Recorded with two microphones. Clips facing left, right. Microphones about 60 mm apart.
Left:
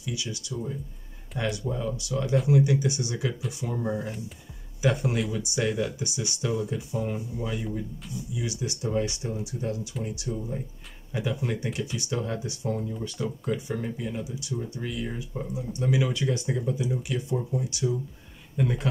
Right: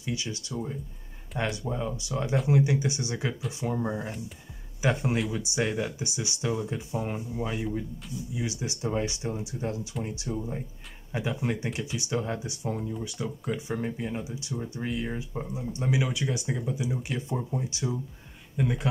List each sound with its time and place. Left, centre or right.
0.0 s speech: right
12.9 s speech: centre
13.7 s speech: right
17.1 s speech: right
18.6 s speech: centre